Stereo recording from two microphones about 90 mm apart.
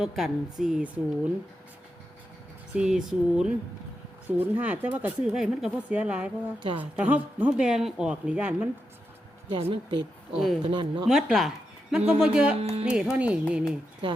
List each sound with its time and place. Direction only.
0.0 s a woman's voice: 5° right (ahead or behind)
2.7 s speech: 5° right (ahead or behind)
4.3 s speech: 20° right (ahead or behind)
5.2 s speech: 5° right (ahead or behind)
7.5 s speech: 5° right (ahead or behind)
9.6 s speech: 80° right
10.3 s a woman's voice: centre (ahead or behind)
10.6 s speech: 65° right (ahead or behind)
11.0 s speech: centre (ahead or behind)